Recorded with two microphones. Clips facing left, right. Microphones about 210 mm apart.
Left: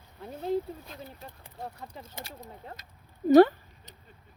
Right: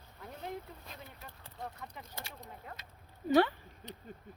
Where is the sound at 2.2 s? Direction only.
40° left (ahead or behind).